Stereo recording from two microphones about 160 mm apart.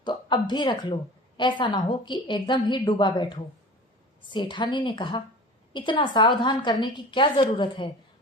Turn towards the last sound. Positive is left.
turn(degrees=30)  # may be behind; listen again after turning